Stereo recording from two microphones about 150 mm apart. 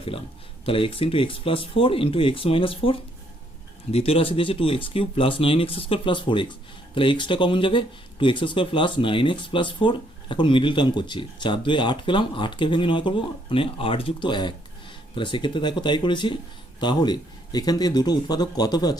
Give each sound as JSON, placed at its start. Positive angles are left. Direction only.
{"t": 0.6, "sound": "speech", "side_deg": 40}